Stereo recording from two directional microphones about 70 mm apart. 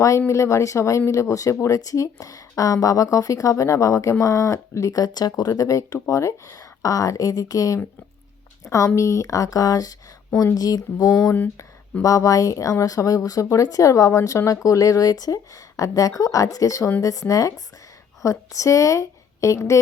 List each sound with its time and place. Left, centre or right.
0.3 s speech: left
12.0 s a woman's voice: left